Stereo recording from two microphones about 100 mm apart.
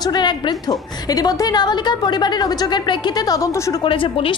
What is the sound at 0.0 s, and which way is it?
A woman's voice, 45° left (ahead or behind).